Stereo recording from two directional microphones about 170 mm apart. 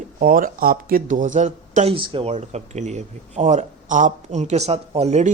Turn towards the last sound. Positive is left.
turn(degrees=-40)  # may be behind; listen again after turning